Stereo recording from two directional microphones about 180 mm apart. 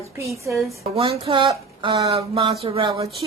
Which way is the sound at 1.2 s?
30° right (ahead or behind).